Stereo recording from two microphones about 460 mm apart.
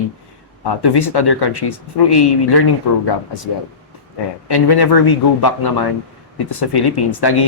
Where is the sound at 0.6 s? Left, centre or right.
Left.